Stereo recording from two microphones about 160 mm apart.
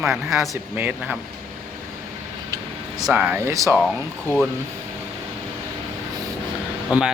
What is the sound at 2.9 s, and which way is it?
Speech, 5° right (ahead or behind).